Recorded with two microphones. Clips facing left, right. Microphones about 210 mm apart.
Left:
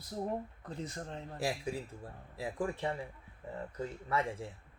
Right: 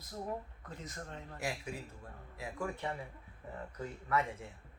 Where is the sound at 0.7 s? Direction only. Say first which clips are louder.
Left 4 dB; 30° left (ahead or behind).